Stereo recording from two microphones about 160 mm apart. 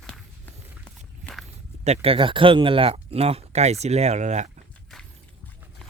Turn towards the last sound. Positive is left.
turn(degrees=-45)  # may be behind; listen again after turning